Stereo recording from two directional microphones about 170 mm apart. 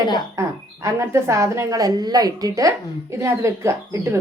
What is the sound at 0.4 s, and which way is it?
A woman's voice, 15° right (ahead or behind).